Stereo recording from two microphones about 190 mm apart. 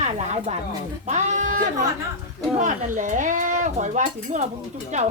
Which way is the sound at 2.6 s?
40° right (ahead or behind).